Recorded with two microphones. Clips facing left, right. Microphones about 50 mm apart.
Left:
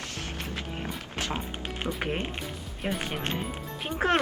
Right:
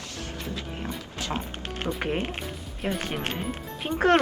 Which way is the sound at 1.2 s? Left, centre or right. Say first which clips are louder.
Right 1 dB; left.